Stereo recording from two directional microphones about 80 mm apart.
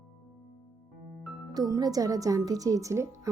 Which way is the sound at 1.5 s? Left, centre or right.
Right.